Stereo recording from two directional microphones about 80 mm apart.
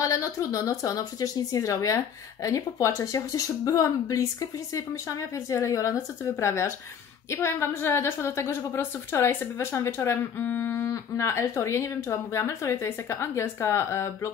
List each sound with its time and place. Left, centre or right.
0.0 s a woman's voice: left
10.4 s a sound: left
10.9 s a woman's voice: left